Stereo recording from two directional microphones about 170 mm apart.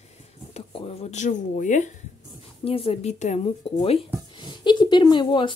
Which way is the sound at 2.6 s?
35° left (ahead or behind).